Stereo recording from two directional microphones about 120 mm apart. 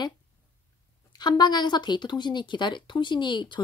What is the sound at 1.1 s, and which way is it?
Speech, 35° left (ahead or behind).